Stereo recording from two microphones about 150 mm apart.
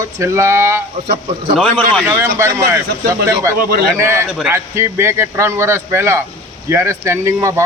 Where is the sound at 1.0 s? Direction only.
85° right.